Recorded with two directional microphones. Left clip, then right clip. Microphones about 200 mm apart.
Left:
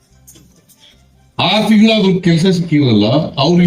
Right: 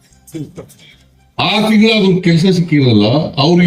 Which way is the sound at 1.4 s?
30° right (ahead or behind).